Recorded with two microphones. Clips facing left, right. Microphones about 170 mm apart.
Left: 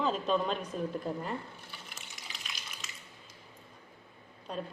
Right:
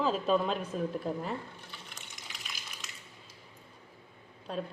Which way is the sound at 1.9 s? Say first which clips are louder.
Even; centre (ahead or behind).